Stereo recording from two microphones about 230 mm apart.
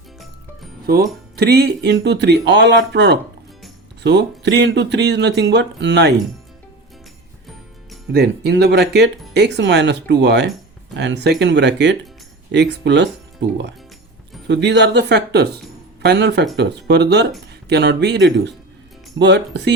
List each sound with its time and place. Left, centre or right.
1.4 s speech: right
8.1 s speech: right